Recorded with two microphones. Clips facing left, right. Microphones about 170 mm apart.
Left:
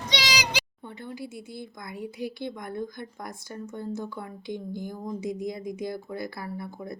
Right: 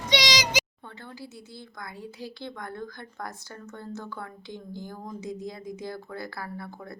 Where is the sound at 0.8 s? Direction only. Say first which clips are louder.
Left 5 dB; 15° left (ahead or behind).